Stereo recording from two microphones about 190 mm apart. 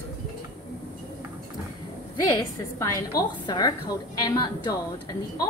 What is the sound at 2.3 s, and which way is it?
A woman's voice, 20° left (ahead or behind).